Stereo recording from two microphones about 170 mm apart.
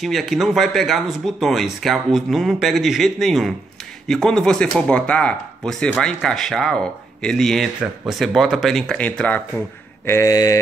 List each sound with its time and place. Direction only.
0.0 s speech: centre (ahead or behind)
10.0 s mantra: 15° left (ahead or behind)